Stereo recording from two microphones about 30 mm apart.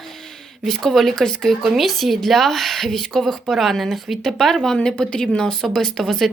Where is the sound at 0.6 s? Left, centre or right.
Centre.